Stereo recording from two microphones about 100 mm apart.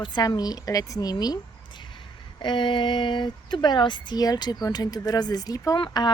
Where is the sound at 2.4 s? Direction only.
55° left (ahead or behind); by 5.8 s 40° left (ahead or behind).